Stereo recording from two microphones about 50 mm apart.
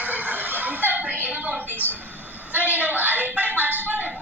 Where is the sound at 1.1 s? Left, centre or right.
Right.